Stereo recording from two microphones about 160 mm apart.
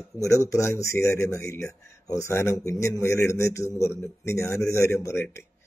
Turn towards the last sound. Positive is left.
turn(degrees=15)  # may be behind; listen again after turning